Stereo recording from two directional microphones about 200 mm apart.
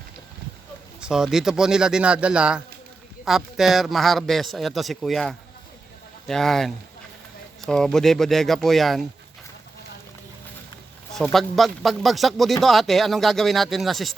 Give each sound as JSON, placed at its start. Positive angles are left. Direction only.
{"t": 1.0, "sound": "speech", "side_deg": -5}
{"t": 11.1, "sound": "speech", "side_deg": 0}